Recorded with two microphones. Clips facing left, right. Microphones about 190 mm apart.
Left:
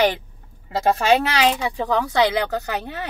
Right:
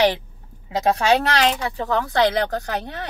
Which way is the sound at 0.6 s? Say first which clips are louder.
Even; centre (ahead or behind).